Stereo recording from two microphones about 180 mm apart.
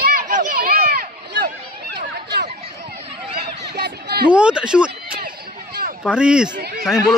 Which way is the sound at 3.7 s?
65° right (ahead or behind).